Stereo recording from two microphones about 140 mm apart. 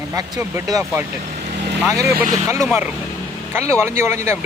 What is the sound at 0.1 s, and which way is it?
Speech, 20° right (ahead or behind).